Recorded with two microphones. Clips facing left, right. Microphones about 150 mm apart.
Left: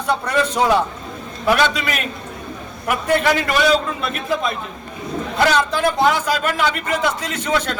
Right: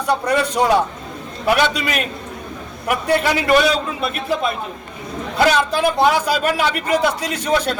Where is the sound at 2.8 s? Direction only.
10° right (ahead or behind).